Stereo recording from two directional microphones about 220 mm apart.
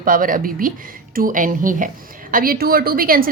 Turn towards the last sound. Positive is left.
turn(degrees=-40)  # may be behind; listen again after turning